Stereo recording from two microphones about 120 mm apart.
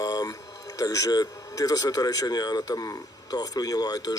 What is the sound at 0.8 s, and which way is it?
A man's voice, 30° left (ahead or behind).